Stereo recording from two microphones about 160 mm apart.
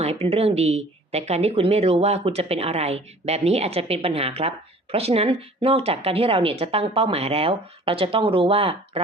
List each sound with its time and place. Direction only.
0.0 s speech: 40° right (ahead or behind)